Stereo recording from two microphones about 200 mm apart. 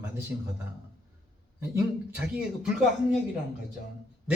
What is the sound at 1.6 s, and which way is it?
Speech, 10° right (ahead or behind).